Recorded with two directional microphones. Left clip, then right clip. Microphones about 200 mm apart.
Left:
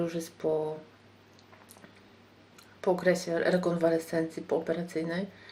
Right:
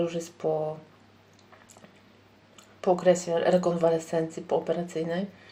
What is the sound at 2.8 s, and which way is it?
Speech, 5° left (ahead or behind).